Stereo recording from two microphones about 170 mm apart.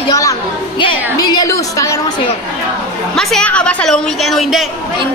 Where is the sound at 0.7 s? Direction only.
30° left (ahead or behind).